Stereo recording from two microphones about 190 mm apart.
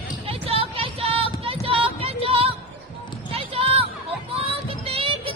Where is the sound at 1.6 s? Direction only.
30° right (ahead or behind).